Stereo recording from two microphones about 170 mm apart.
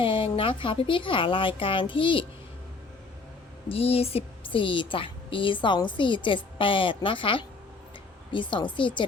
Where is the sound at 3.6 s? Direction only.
35° left (ahead or behind).